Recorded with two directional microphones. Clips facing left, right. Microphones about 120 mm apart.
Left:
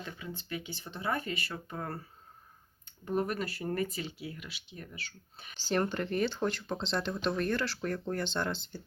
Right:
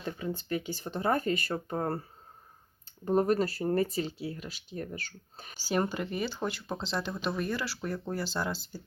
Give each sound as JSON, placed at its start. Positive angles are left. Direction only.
{"t": 0.0, "sound": "speech", "side_deg": -40}
{"t": 5.5, "sound": "speech", "side_deg": -10}